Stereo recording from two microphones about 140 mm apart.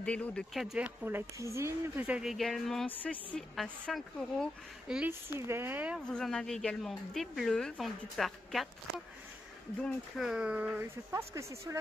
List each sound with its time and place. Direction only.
0.0 s speech: 10° left (ahead or behind); by 1.7 s 20° right (ahead or behind)
2.0 s a woman's voice: 10° right (ahead or behind)
4.8 s speech: 5° right (ahead or behind)
5.3 s speech: 15° right (ahead or behind)
6.0 s speech: 5° left (ahead or behind)
10.1 s speech: 5° right (ahead or behind); by 11.8 s 20° right (ahead or behind)